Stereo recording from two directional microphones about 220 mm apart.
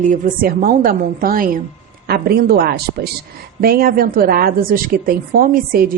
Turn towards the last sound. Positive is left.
turn(degrees=-40)  # may be behind; listen again after turning